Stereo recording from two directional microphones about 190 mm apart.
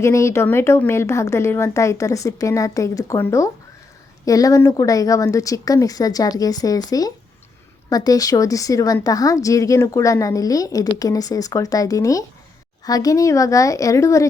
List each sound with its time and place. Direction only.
0.0 s a woman's voice: 15° left (ahead or behind)